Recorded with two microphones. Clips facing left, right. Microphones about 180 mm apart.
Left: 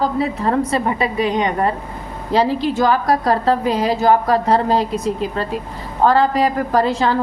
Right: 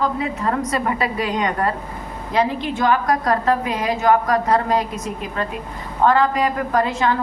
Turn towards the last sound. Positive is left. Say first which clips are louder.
# left 3 dB
turn(degrees=35)  # may be behind; listen again after turning